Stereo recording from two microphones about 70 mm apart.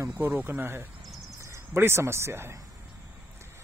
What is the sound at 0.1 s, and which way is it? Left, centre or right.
Speech, right.